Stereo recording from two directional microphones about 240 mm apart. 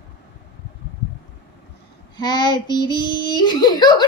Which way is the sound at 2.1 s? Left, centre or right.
Centre.